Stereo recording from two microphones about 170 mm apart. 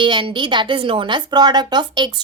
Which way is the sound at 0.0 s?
30° right (ahead or behind).